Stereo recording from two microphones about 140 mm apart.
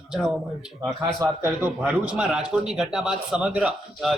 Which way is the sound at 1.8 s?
5° right (ahead or behind).